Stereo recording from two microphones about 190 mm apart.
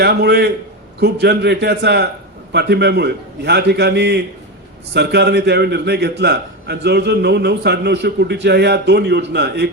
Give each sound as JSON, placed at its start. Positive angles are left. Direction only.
{"t": 0.0, "sound": "a man's voice", "side_deg": -60}